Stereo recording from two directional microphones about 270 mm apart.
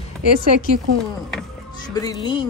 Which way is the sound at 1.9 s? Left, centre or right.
Centre.